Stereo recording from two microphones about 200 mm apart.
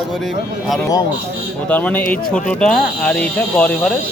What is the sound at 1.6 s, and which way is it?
Speech, 10° left (ahead or behind).